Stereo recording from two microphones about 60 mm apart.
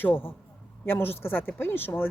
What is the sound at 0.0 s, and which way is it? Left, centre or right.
A woman's voice, left.